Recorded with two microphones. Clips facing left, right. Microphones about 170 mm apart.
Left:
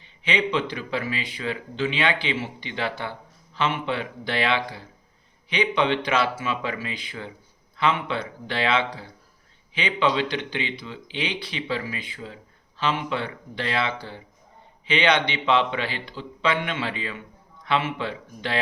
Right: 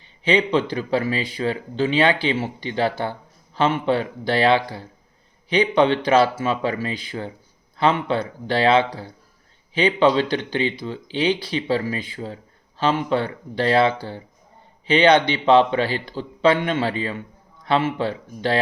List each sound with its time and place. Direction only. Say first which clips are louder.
0.0 s speech: right 6 dB; 35° right (ahead or behind)